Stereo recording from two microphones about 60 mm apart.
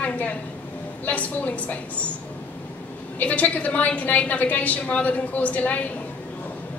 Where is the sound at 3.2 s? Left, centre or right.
Left.